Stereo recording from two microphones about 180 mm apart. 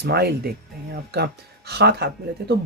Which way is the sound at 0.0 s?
60° right (ahead or behind).